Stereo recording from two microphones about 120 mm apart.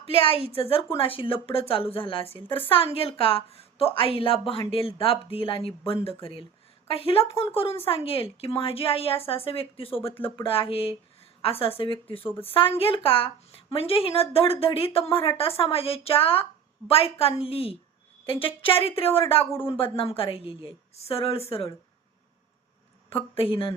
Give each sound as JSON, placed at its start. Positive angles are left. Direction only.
{"t": 0.0, "sound": "a woman's voice", "side_deg": 50}
{"t": 12.3, "sound": "a woman's voice", "side_deg": 20}
{"t": 12.5, "sound": "a woman's voice", "side_deg": 50}
{"t": 23.1, "sound": "a woman's voice", "side_deg": 50}